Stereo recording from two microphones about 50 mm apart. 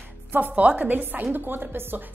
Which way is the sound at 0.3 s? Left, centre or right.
Right.